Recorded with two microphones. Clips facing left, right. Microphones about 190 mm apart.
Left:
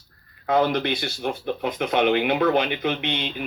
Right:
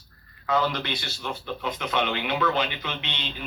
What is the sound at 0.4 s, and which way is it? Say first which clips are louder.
Speech: left 5 dB; 55° left (ahead or behind).